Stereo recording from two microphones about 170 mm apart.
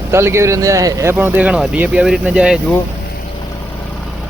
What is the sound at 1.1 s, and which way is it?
Speech, 10° right (ahead or behind).